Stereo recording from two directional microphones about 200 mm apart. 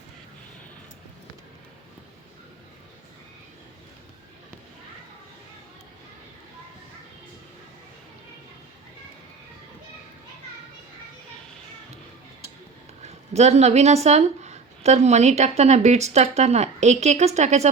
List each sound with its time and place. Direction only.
13.3 s a woman's voice: 35° right (ahead or behind)